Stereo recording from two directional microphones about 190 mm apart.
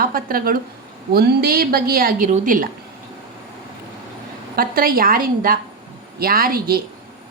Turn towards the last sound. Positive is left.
turn(degrees=-50)  # may be behind; listen again after turning